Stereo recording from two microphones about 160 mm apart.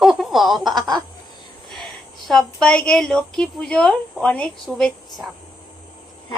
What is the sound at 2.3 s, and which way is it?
A woman's voice, 5° left (ahead or behind).